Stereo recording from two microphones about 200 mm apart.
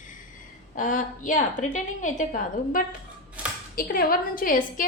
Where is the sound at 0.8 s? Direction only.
40° left (ahead or behind).